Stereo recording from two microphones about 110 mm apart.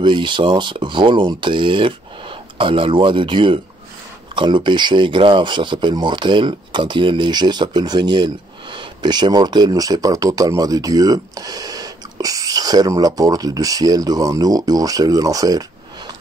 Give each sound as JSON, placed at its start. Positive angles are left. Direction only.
{"t": 0.0, "sound": "speech", "side_deg": -45}